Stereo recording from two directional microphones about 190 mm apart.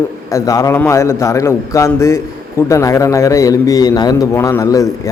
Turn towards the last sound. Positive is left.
turn(degrees=15)  # may be behind; listen again after turning